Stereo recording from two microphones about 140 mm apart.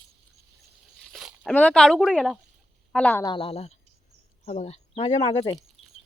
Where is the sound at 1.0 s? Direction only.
Centre (ahead or behind).